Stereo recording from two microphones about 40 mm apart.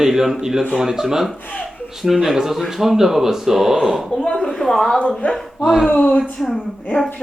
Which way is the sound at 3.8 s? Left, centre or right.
Centre.